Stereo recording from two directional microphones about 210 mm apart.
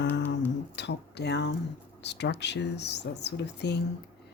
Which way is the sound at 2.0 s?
55° left (ahead or behind).